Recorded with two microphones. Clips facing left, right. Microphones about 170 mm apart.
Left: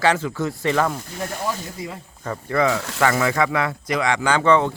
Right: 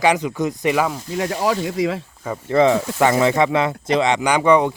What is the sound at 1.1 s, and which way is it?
Speech, 90° right.